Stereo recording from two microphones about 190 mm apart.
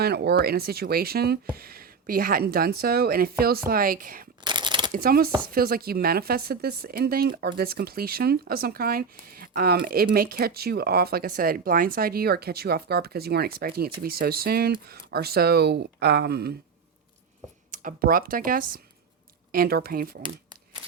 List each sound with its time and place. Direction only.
0.0 s speech: 55° right (ahead or behind)
4.4 s a sound: 25° right (ahead or behind)
4.9 s speech: 50° right (ahead or behind)
17.7 s speech: 50° right (ahead or behind)